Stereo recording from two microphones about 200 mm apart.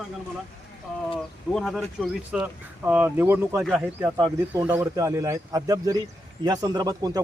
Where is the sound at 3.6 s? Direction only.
Centre (ahead or behind).